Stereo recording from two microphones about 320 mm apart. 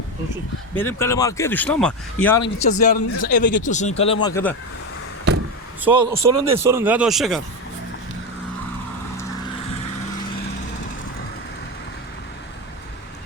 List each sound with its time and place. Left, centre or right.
0.8 s speech: centre
2.6 s speech: left
5.9 s speech: centre